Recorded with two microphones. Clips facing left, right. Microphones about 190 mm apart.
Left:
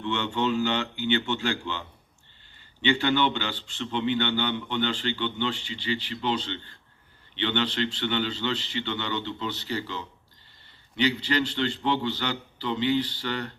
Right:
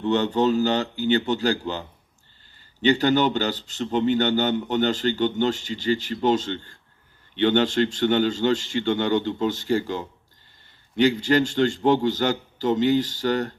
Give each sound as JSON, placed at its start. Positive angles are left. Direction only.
{"t": 0.0, "sound": "speech", "side_deg": -40}
{"t": 2.8, "sound": "a man's voice", "side_deg": -40}